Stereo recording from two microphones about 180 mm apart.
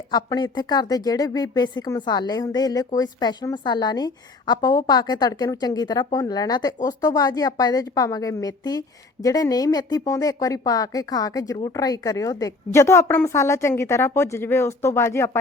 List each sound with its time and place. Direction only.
0.1 s a woman's voice: 20° left (ahead or behind)